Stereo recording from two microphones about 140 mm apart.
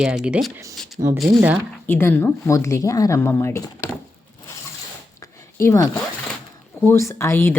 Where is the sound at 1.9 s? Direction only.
15° left (ahead or behind).